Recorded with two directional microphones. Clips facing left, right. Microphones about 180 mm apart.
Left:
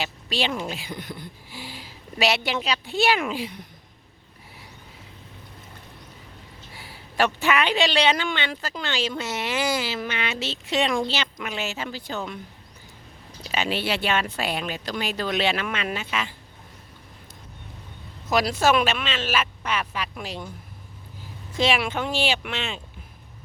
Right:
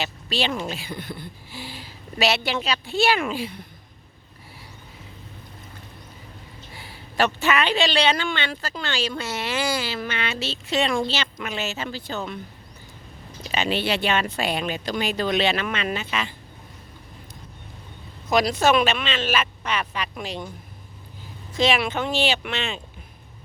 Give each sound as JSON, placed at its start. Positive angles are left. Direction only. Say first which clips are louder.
{"t": 0.0, "sound": "a man's voice", "louder": "right 1 dB", "side_deg": 15}
{"t": 6.7, "sound": "a man's voice", "louder": "right 1 dB", "side_deg": 10}
{"t": 13.4, "sound": "speech", "louder": "right 2 dB", "side_deg": 5}
{"t": 18.3, "sound": "a man's voice", "louder": "right 1 dB", "side_deg": 5}
{"t": 21.6, "sound": "a man's voice", "louder": "right 1 dB", "side_deg": 10}